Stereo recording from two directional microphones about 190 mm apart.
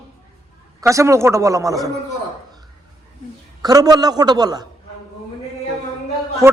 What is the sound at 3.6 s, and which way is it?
A man's voice, 20° right (ahead or behind).